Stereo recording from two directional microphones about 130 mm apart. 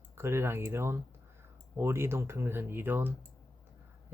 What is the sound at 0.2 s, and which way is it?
Speech, 20° right (ahead or behind).